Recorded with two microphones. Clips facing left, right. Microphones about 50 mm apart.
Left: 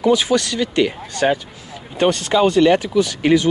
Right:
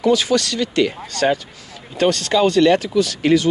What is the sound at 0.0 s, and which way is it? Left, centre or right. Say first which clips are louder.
Speech: left 1 dB; left.